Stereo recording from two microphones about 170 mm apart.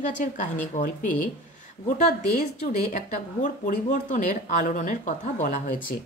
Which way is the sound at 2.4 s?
45° left (ahead or behind).